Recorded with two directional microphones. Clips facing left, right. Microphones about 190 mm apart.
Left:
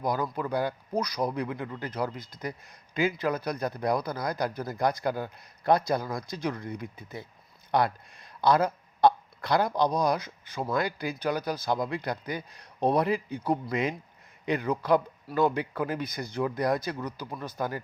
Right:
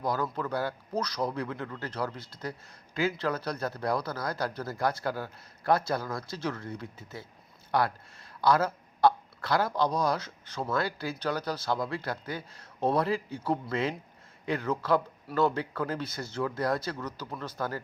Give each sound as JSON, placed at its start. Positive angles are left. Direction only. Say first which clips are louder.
{"t": 0.0, "sound": "speech", "louder": "left 1 dB", "side_deg": 15}